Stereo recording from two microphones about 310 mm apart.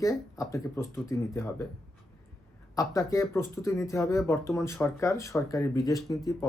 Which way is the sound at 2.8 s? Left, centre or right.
Centre.